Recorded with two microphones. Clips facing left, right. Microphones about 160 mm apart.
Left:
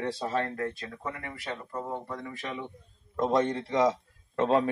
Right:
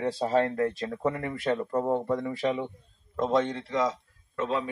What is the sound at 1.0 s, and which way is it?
Speech, 50° right (ahead or behind).